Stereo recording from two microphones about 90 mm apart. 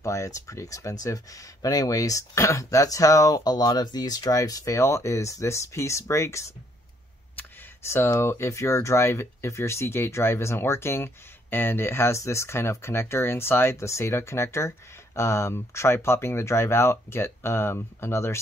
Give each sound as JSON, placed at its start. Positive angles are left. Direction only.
{"t": 0.0, "sound": "speech", "side_deg": 35}